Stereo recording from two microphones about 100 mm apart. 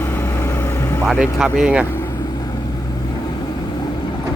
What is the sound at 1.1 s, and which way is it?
Speech, 10° right (ahead or behind).